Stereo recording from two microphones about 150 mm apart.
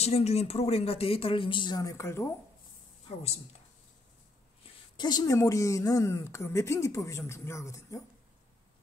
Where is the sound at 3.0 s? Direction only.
45° left (ahead or behind).